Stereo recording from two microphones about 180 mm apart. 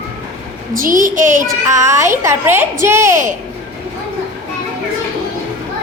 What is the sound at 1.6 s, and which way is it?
Speech, 15° right (ahead or behind).